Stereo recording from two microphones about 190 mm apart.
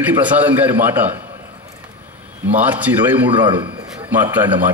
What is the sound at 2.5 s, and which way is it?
Speech, 10° right (ahead or behind).